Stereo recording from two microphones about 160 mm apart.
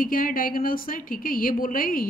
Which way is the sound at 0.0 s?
60° left (ahead or behind).